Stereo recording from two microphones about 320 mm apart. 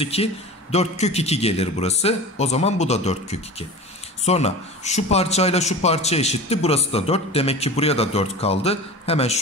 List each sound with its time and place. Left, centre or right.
0.0 s a man's voice: centre